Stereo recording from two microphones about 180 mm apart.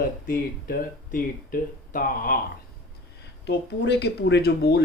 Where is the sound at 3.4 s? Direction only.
70° left (ahead or behind).